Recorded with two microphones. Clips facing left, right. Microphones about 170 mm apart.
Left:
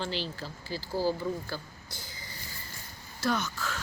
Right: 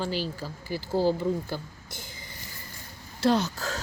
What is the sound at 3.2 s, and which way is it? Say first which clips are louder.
Speech: right 6 dB; 30° right (ahead or behind).